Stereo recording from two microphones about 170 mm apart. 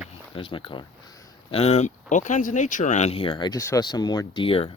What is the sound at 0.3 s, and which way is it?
Speech, 30° left (ahead or behind).